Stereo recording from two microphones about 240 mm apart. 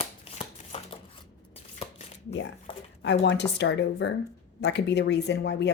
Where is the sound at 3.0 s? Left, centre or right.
Left.